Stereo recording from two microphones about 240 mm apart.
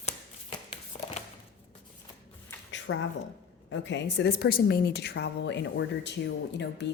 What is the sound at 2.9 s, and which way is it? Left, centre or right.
A woman's voice, left.